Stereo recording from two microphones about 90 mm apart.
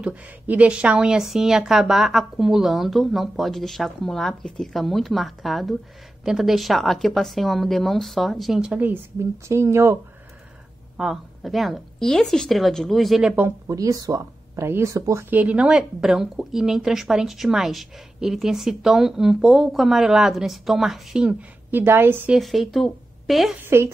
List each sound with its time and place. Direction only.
0.0 s speech: 15° right (ahead or behind)
8.7 s a woman's voice: 20° right (ahead or behind)
9.2 s speech: 30° right (ahead or behind)
11.0 s speech: centre (ahead or behind)
13.7 s speech: 40° right (ahead or behind)
15.2 s speech: 15° right (ahead or behind)
22.3 s a woman's voice: centre (ahead or behind)
23.6 s speech: 30° right (ahead or behind)